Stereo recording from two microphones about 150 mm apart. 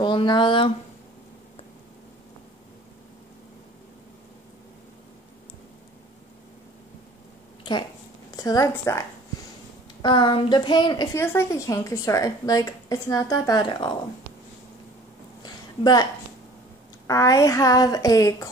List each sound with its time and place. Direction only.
0.0 s speech: 30° left (ahead or behind)
8.4 s a woman's voice: 25° left (ahead or behind)
10.0 s speech: 30° left (ahead or behind)
11.1 s a woman's voice: 15° left (ahead or behind); by 13.9 s 30° left (ahead or behind)
15.4 s a sound: 25° left (ahead or behind)
17.1 s a woman's voice: 20° left (ahead or behind)